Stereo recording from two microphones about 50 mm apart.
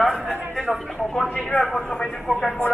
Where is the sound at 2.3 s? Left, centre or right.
Centre.